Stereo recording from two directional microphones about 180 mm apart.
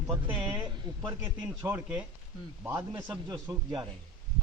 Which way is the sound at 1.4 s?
5° right (ahead or behind).